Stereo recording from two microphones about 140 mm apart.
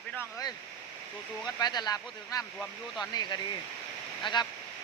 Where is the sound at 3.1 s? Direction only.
30° left (ahead or behind).